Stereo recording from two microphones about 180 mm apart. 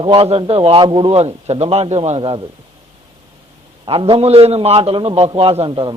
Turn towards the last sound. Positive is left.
turn(degrees=-30)  # may be behind; listen again after turning